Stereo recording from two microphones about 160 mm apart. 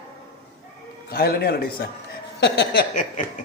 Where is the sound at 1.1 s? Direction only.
80° left.